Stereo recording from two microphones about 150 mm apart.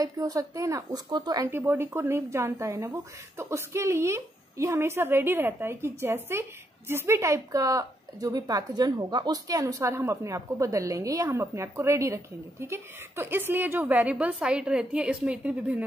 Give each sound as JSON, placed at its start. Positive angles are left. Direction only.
{"t": 0.0, "sound": "a woman's voice", "side_deg": -25}
{"t": 1.5, "sound": "a woman's voice", "side_deg": -15}